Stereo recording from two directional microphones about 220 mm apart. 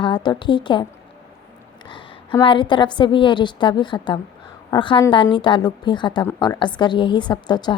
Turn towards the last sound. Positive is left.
turn(degrees=20)  # may be behind; listen again after turning